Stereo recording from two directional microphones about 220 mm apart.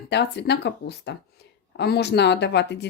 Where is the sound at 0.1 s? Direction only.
50° left (ahead or behind).